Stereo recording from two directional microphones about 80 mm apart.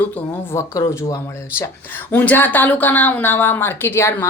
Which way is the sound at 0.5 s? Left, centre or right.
Left.